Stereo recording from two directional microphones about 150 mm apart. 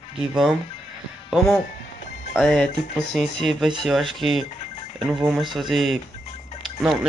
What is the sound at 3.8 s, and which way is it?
Speech, centre (ahead or behind).